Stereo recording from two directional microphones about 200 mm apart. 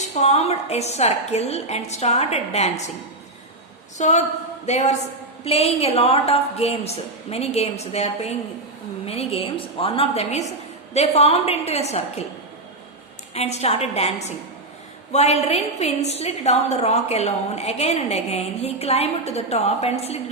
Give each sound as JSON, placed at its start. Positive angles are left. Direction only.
{"t": 0.1, "sound": "a woman's voice", "side_deg": 35}
{"t": 3.9, "sound": "a woman's voice", "side_deg": 35}
{"t": 13.3, "sound": "a woman's voice", "side_deg": 30}